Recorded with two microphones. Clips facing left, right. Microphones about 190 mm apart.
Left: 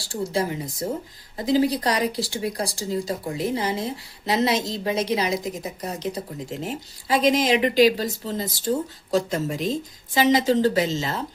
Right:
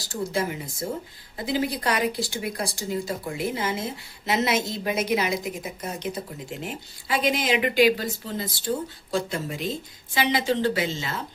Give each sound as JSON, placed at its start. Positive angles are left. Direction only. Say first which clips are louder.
{"t": 0.3, "sound": "a woman's voice", "louder": "left 3 dB", "side_deg": 35}